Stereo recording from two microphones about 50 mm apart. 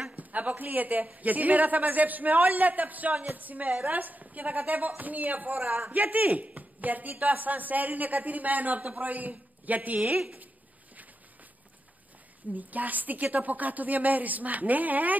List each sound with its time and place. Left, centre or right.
0.1 s a woman's voice: right
12.5 s a woman's voice: right